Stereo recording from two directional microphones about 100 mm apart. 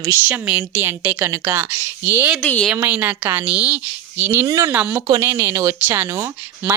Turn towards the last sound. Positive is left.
turn(degrees=-30)  # may be behind; listen again after turning